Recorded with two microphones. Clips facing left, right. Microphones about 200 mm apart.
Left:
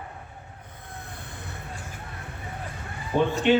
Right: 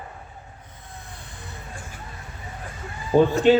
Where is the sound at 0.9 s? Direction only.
55° left (ahead or behind).